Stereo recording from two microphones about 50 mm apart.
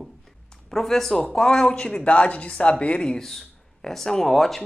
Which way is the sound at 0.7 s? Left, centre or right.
Centre.